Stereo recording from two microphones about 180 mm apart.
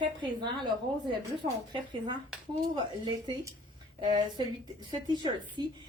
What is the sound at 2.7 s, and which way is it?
A woman's voice, 25° right (ahead or behind).